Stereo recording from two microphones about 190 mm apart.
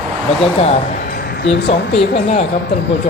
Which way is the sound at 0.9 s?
50° left (ahead or behind).